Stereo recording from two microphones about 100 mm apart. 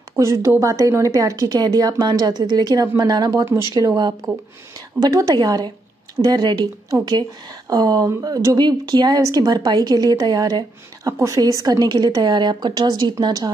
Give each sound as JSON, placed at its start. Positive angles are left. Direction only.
{"t": 0.1, "sound": "a woman's voice", "side_deg": -30}